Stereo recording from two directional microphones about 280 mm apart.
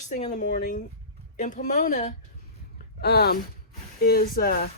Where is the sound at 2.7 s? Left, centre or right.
Left.